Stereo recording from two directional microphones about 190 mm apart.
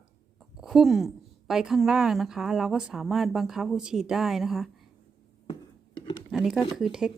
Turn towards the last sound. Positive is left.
turn(degrees=0)  # may be behind; listen again after turning